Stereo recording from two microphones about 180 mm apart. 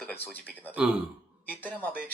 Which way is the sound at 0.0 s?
10° left (ahead or behind).